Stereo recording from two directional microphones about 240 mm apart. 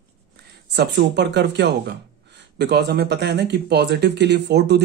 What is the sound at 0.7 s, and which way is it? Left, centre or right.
Speech, right.